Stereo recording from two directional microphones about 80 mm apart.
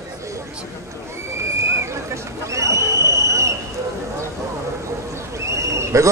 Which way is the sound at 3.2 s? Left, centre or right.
Right.